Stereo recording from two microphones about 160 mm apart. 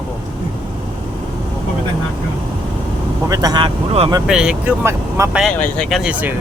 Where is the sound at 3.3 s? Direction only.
25° right (ahead or behind).